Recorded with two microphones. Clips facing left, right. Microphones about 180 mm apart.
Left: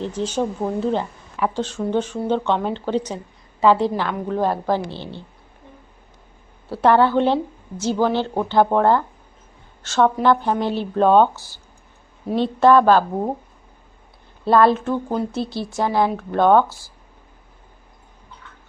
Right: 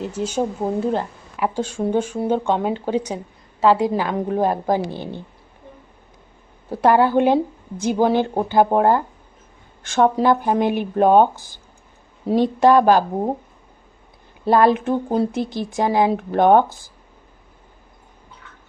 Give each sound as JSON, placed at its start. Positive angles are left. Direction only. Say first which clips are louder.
{"t": 0.0, "sound": "speech", "louder": "even", "side_deg": -10}
{"t": 6.7, "sound": "a woman's voice", "louder": "even", "side_deg": -10}
{"t": 14.4, "sound": "speech", "louder": "even", "side_deg": -15}